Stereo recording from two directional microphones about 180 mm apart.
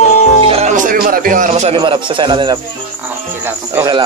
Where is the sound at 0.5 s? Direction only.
40° right (ahead or behind).